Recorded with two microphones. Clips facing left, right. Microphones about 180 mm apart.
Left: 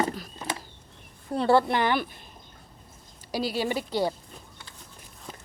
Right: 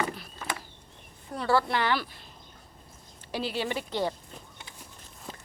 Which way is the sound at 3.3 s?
40° left (ahead or behind).